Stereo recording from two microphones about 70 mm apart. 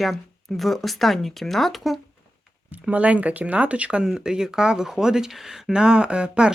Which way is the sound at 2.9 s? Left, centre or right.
Centre.